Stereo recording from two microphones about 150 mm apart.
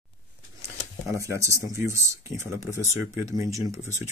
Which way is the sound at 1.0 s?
20° right (ahead or behind).